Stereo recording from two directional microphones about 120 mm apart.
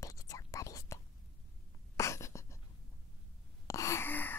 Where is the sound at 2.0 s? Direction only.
25° left (ahead or behind).